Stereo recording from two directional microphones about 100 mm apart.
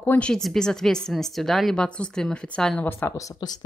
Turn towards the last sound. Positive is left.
turn(degrees=40)  # may be behind; listen again after turning